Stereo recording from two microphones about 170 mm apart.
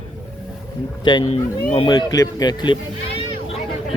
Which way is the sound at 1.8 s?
25° left (ahead or behind).